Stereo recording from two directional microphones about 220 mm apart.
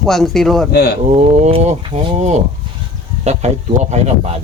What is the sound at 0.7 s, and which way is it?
Speech, 45° left (ahead or behind).